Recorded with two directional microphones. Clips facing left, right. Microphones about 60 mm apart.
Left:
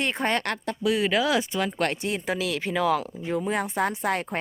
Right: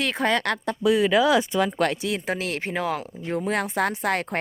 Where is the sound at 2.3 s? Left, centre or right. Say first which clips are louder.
Even; right.